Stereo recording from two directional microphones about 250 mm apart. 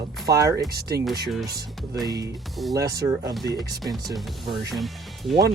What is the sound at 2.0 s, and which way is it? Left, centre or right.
Speech, centre.